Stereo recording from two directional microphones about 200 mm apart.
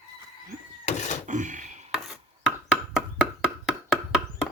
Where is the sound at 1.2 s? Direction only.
40° right (ahead or behind).